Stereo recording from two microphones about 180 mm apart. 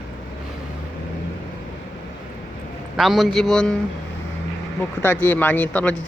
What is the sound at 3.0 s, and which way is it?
Speech, centre (ahead or behind).